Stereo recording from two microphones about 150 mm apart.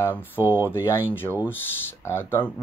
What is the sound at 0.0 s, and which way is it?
Speech, 15° left (ahead or behind).